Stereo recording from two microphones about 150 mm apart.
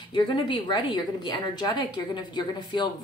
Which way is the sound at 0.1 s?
30° left (ahead or behind).